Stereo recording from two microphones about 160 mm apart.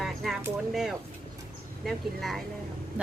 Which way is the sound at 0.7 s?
5° right (ahead or behind).